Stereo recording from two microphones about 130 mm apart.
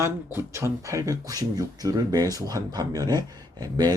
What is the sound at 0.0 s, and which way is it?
Speech, 20° right (ahead or behind).